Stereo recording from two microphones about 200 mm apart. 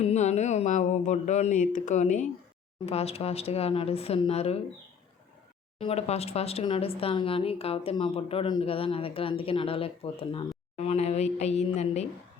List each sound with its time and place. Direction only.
0.0 s speech: 35° left (ahead or behind)
5.8 s speech: 30° left (ahead or behind)